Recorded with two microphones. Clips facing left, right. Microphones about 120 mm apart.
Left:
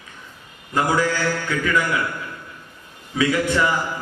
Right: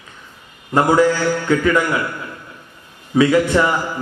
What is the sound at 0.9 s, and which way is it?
Mantra, 30° right (ahead or behind).